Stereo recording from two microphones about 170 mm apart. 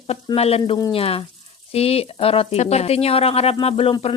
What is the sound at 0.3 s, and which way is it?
Speech, 35° left (ahead or behind).